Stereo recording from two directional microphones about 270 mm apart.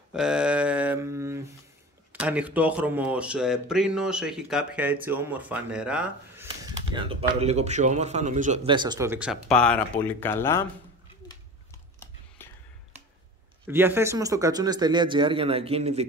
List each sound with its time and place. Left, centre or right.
0.1 s speech: centre
6.9 s a man's voice: centre
12.4 s a sound: centre
13.7 s a man's voice: centre